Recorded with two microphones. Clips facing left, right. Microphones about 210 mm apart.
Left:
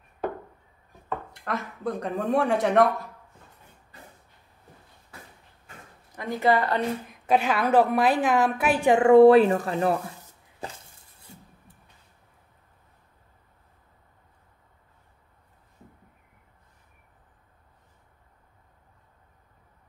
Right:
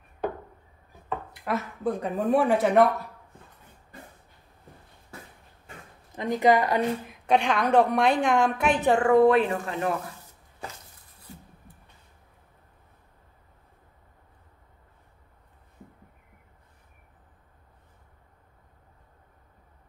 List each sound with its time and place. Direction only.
1.0 s speech: 5° right (ahead or behind)
6.1 s speech: 20° right (ahead or behind)
7.1 s a woman's voice: 5° left (ahead or behind)
9.0 s speech: 30° left (ahead or behind)